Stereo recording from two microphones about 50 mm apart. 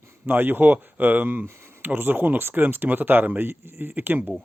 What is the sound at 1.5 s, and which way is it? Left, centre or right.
Speech, right.